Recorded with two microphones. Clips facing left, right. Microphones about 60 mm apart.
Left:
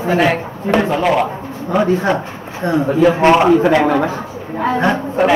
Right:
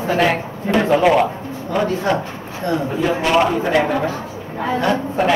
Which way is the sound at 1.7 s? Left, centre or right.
Centre.